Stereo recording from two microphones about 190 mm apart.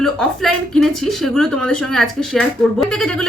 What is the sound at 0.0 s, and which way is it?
Speech, centre (ahead or behind).